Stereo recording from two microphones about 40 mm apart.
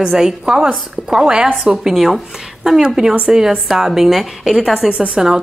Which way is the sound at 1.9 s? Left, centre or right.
Centre.